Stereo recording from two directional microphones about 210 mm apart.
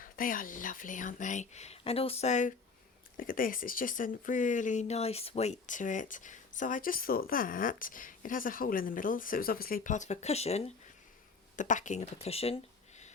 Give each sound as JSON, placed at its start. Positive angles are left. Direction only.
{"t": 0.0, "sound": "speech", "side_deg": 40}